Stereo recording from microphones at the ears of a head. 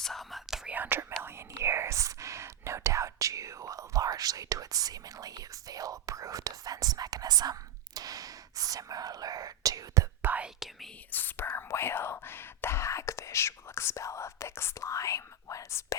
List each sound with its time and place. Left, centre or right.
0.3 s whispering: centre
0.8 s whispering: right
7.9 s speech: right
11.1 s whispering: left